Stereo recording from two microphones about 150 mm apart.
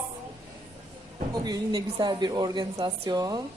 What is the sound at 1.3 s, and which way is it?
A woman's voice, 30° right (ahead or behind).